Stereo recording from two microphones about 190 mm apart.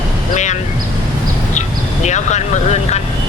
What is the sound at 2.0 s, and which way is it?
Speech, 35° left (ahead or behind).